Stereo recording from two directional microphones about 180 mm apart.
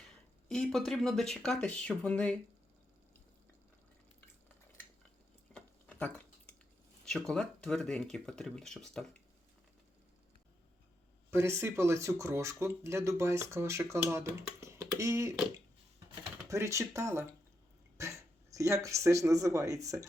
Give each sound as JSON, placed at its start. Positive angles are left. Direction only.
{"t": 0.4, "sound": "speech", "side_deg": 5}
{"t": 5.5, "sound": "a sound", "side_deg": 5}
{"t": 7.0, "sound": "speech", "side_deg": 5}
{"t": 11.3, "sound": "speech", "side_deg": -15}
{"t": 16.5, "sound": "speech", "side_deg": -15}